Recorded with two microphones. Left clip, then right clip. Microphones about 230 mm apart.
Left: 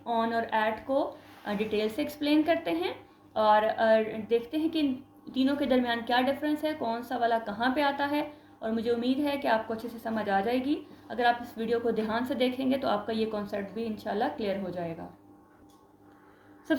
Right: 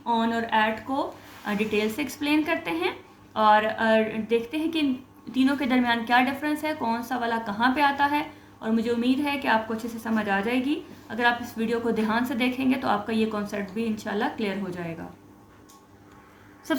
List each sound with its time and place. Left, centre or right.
0.1 s a woman's voice: centre